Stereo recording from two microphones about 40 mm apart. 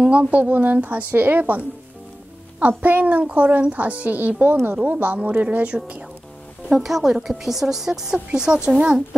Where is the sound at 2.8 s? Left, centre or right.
Right.